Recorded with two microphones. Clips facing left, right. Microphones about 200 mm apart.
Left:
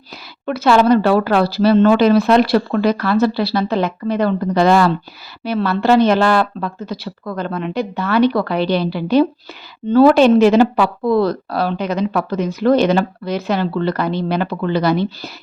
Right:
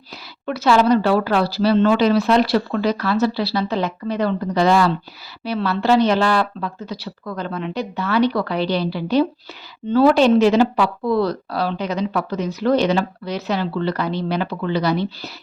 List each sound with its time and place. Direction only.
0.4 s speech: 55° left (ahead or behind)